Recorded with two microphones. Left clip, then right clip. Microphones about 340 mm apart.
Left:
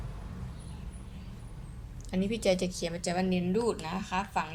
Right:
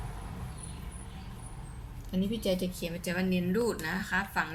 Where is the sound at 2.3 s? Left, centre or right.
Left.